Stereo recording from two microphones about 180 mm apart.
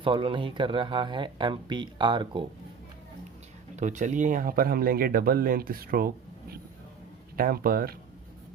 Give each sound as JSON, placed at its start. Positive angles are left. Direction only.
{"t": 0.0, "sound": "speech", "side_deg": -30}
{"t": 3.8, "sound": "speech", "side_deg": -45}
{"t": 7.3, "sound": "speech", "side_deg": -50}